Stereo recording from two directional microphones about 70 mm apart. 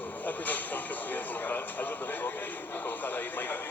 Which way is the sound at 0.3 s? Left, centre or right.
Left.